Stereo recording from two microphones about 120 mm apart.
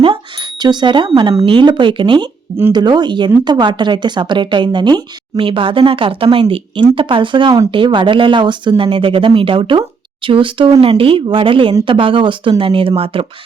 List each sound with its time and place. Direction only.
0.0 s speech: 45° right (ahead or behind)